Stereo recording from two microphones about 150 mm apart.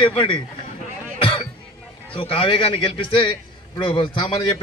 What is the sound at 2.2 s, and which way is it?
A man's voice, 35° left (ahead or behind).